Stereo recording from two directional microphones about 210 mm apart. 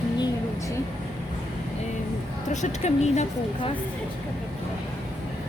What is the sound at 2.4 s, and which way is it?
Speech, 35° left (ahead or behind).